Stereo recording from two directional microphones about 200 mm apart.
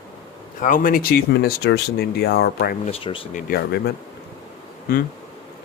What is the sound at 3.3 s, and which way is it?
Speech, 45° left (ahead or behind).